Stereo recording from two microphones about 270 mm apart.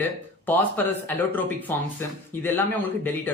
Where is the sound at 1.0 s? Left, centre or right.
Centre.